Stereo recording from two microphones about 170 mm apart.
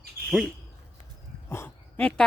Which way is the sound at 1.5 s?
15° left (ahead or behind).